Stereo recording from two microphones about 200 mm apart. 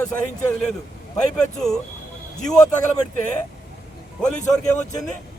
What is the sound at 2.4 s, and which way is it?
Speech, 5° left (ahead or behind).